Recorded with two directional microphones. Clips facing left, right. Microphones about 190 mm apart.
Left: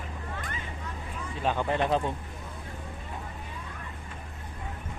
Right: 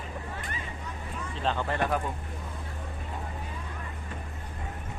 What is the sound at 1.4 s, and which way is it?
Speech, 15° left (ahead or behind).